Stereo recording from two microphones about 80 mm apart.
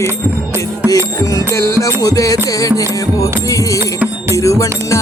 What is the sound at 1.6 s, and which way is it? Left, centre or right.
Music, left.